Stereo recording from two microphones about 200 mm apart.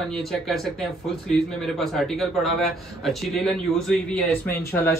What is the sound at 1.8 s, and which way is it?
A man's voice, centre (ahead or behind).